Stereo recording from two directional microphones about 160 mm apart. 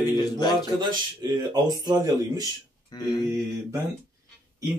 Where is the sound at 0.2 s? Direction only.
25° left (ahead or behind).